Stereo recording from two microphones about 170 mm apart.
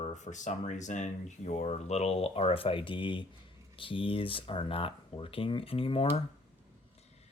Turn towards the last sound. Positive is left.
turn(degrees=35)  # may be behind; listen again after turning